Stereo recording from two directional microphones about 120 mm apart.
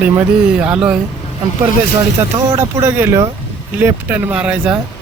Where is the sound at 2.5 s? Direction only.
25° right (ahead or behind).